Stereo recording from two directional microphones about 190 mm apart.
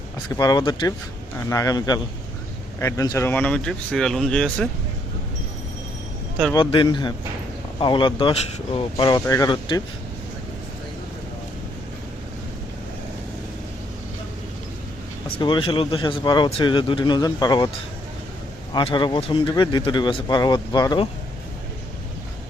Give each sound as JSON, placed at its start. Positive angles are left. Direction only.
{"t": 0.3, "sound": "speech", "side_deg": 20}
{"t": 6.5, "sound": "speech", "side_deg": 25}
{"t": 15.4, "sound": "speech", "side_deg": 25}
{"t": 18.7, "sound": "speech", "side_deg": 25}